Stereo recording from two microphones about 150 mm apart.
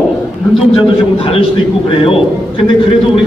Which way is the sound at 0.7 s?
40° left (ahead or behind).